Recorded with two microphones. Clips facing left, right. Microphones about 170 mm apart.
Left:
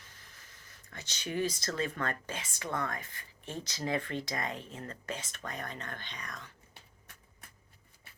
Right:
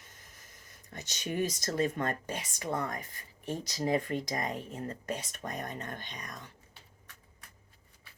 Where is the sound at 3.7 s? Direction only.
35° right (ahead or behind).